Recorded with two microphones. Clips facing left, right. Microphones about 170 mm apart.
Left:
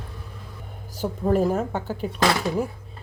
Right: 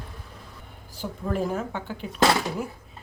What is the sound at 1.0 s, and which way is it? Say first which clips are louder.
Speech: left 7 dB; 40° left (ahead or behind).